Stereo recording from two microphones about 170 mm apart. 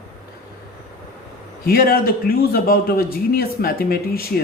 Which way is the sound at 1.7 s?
60° left (ahead or behind).